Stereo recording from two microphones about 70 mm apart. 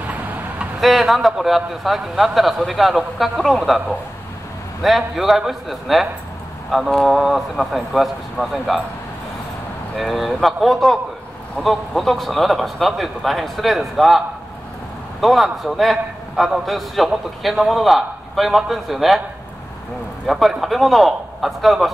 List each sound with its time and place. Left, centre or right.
0.0 s vehicle: right
0.7 s a man's voice: centre
4.8 s a man's voice: centre
9.9 s a man's voice: centre
20.2 s a man's voice: centre